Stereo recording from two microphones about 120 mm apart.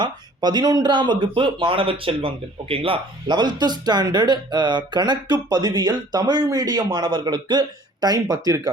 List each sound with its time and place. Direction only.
0.0 s speech: 35° right (ahead or behind)